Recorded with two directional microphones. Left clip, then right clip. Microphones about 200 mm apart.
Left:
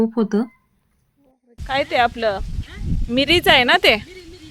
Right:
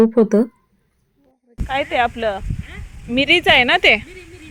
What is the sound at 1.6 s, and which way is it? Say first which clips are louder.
Speech: even; 15° left (ahead or behind).